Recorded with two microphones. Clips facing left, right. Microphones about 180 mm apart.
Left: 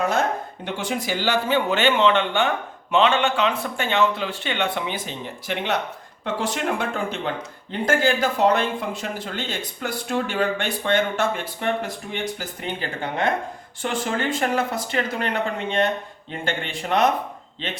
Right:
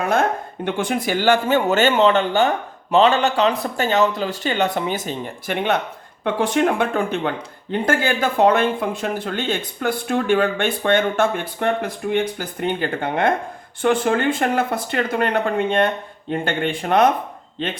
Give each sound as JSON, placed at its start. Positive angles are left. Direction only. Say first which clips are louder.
{"t": 0.0, "sound": "a man's voice", "louder": "right 3 dB", "side_deg": -55}